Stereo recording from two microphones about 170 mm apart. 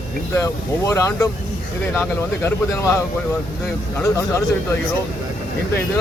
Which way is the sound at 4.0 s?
15° left (ahead or behind).